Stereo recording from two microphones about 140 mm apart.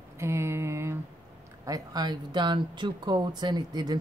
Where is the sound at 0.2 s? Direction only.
20° right (ahead or behind).